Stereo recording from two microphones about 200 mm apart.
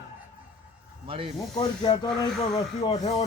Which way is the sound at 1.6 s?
20° left (ahead or behind).